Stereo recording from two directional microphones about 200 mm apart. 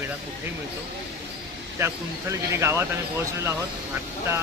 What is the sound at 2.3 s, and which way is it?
Speech, 15° right (ahead or behind).